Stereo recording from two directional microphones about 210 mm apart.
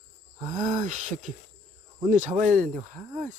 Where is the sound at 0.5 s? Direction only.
40° right (ahead or behind).